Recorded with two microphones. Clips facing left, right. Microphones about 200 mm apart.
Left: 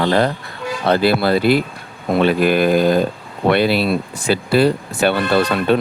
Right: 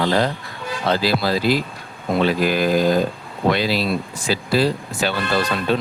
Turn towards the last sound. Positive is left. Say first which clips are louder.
# left 5 dB
turn(degrees=60)  # may be behind; listen again after turning